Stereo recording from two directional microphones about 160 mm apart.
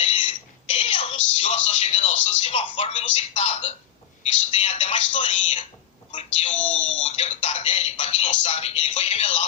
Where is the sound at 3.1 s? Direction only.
40° left (ahead or behind).